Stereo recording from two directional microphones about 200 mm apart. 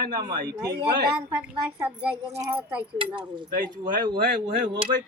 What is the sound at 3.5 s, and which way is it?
Speech, 45° right (ahead or behind).